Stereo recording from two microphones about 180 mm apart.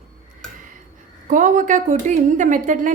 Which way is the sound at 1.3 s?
45° right (ahead or behind).